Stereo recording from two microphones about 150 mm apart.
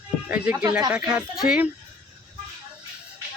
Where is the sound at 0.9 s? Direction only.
5° right (ahead or behind).